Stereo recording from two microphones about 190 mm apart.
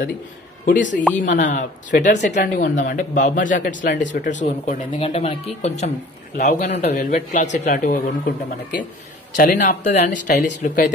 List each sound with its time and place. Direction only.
1.2 s a man's voice: 40° left (ahead or behind)